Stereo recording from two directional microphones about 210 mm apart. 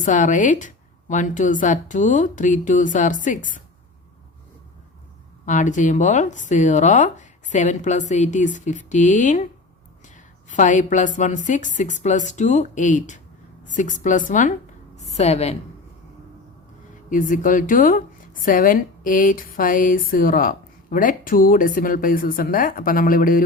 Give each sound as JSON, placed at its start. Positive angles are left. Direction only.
{"t": 0.0, "sound": "speech", "side_deg": 35}
{"t": 5.5, "sound": "speech", "side_deg": 35}
{"t": 10.5, "sound": "speech", "side_deg": 35}
{"t": 17.1, "sound": "speech", "side_deg": 40}